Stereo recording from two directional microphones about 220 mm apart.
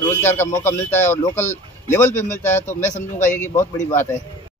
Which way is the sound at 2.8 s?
35° left (ahead or behind).